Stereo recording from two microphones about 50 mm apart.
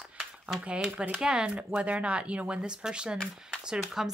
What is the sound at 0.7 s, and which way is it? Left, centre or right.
A woman's voice, centre.